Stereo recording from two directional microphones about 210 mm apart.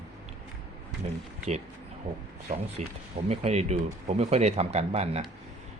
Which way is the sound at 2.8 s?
30° right (ahead or behind).